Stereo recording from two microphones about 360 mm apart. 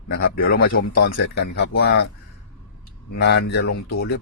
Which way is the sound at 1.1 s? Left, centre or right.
Left.